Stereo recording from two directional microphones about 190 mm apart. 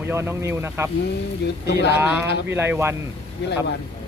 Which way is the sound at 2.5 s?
10° right (ahead or behind).